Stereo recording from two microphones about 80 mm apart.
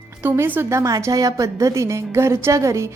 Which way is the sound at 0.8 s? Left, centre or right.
Right.